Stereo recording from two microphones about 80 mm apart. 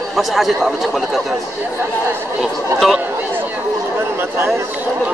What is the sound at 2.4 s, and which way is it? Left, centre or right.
Speech, centre.